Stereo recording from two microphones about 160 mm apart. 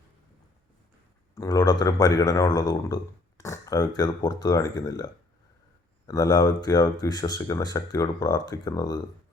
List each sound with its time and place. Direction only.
1.4 s speech: 25° left (ahead or behind)